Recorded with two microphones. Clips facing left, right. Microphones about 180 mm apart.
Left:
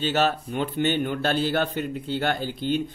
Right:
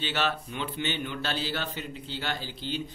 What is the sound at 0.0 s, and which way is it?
Speech, 45° left (ahead or behind).